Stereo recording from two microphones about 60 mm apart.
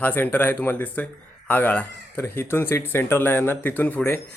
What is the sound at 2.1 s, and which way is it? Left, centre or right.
Speech, left.